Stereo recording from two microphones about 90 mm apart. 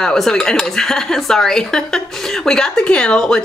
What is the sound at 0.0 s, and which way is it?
Speech, 5° left (ahead or behind).